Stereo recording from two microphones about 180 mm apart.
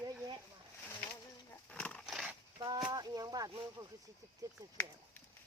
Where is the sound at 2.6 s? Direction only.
25° right (ahead or behind).